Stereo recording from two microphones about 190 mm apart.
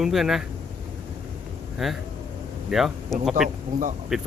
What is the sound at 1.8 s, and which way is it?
Speech, centre (ahead or behind).